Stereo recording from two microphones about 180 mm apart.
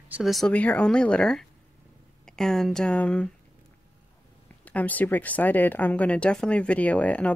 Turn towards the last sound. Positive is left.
turn(degrees=10)  # may be behind; listen again after turning